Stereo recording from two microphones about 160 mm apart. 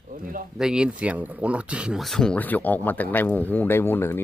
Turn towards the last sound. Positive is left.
turn(degrees=15)  # may be behind; listen again after turning